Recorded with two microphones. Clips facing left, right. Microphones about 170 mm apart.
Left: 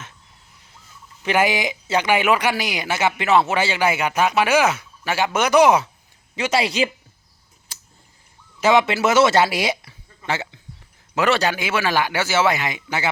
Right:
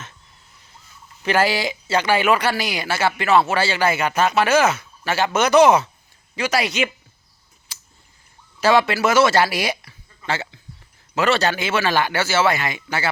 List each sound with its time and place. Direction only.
1.2 s a man's voice: 15° left (ahead or behind)
6.3 s speech: 25° left (ahead or behind)
7.7 s a sound: 45° left (ahead or behind)
8.6 s a man's voice: 20° left (ahead or behind)